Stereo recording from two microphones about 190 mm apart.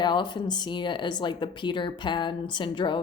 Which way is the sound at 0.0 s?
25° left (ahead or behind).